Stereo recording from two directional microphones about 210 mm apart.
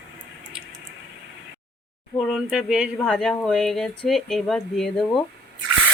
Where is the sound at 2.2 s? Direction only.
5° right (ahead or behind).